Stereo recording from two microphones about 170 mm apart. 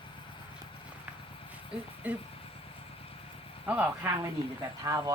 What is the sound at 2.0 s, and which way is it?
Speech, 10° right (ahead or behind).